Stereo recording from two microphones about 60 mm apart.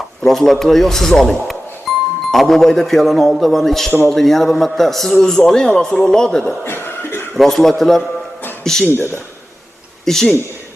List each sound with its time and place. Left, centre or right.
0.2 s speech: centre
1.9 s music: centre
2.3 s speech: centre
6.7 s cough: left
7.3 s speech: centre
8.9 s speech: left
10.1 s speech: centre